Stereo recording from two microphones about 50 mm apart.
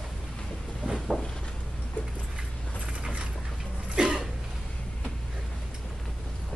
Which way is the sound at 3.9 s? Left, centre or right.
Centre.